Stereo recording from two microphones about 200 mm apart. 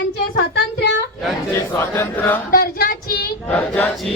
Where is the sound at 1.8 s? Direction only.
10° left (ahead or behind).